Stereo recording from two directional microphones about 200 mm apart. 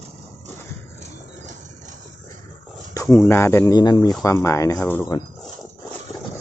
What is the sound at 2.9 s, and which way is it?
Speech, 15° left (ahead or behind).